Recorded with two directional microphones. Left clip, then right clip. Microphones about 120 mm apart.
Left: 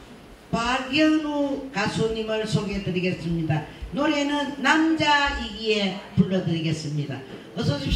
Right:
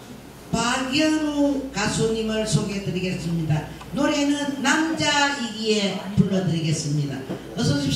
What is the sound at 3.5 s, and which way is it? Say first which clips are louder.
A man's voice: even; 30° right (ahead or behind).